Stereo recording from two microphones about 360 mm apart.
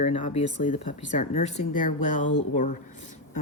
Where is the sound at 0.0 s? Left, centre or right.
Centre.